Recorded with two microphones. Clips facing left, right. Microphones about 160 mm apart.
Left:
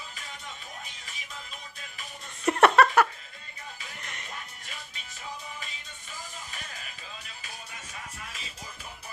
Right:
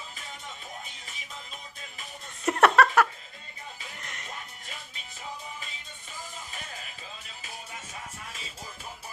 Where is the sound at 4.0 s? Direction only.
Centre (ahead or behind).